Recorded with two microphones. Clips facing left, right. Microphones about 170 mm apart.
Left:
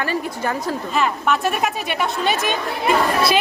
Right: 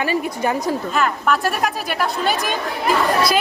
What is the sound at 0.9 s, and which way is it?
Speech, centre (ahead or behind).